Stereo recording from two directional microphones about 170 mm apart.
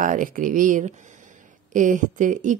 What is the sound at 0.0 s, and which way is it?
Speech, 50° right (ahead or behind).